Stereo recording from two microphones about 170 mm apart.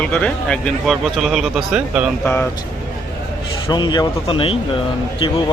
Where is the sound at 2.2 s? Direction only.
10° left (ahead or behind).